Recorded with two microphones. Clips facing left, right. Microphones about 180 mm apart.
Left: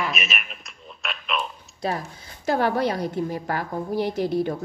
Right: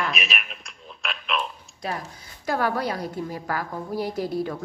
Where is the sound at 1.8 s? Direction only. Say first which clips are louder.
Left 4 dB; 30° left (ahead or behind).